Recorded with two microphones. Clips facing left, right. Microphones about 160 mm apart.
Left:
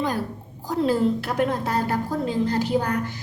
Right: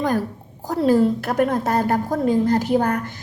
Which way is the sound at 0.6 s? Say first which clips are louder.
Right 4 dB; 45° right (ahead or behind).